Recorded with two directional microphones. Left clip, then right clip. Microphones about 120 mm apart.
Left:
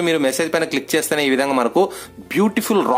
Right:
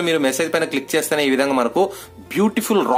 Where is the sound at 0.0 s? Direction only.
25° left (ahead or behind).